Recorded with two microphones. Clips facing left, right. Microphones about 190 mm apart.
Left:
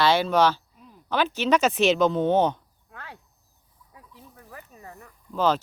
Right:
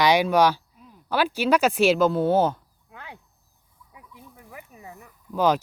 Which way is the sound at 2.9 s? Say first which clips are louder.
Right 1 dB; 15° right (ahead or behind).